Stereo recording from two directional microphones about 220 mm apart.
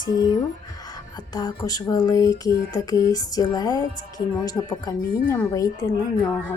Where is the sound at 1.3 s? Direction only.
15° left (ahead or behind).